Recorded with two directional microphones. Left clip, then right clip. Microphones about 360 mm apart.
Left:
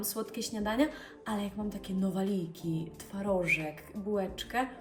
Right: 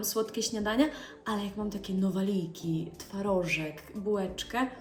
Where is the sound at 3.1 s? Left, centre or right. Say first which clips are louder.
Even; left.